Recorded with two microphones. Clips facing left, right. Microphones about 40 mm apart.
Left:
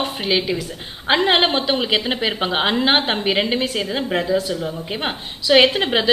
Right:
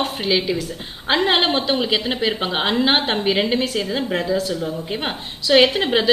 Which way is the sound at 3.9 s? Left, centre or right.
Centre.